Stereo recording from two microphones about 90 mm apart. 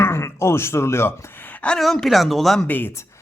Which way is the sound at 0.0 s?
30° left (ahead or behind).